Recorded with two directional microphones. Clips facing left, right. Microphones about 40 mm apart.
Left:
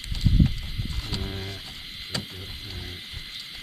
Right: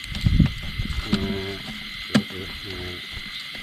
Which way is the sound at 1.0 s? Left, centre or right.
Right.